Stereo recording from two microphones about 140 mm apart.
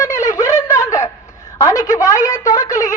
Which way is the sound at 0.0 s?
20° left (ahead or behind).